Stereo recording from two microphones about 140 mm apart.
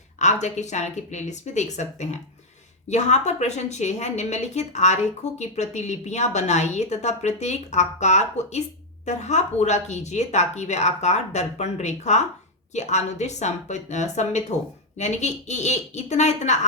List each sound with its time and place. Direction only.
0.2 s a woman's voice: 55° left (ahead or behind)